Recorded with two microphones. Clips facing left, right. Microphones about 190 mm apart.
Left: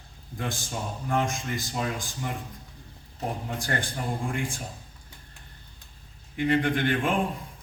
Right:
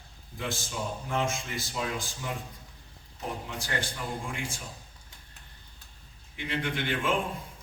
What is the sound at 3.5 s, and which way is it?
A man's voice, 50° left (ahead or behind).